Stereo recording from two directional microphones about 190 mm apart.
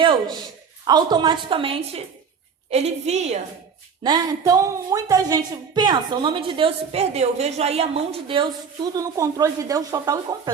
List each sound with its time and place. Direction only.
0.0 s a woman's voice: 25° right (ahead or behind)
4.0 s speech: 20° right (ahead or behind)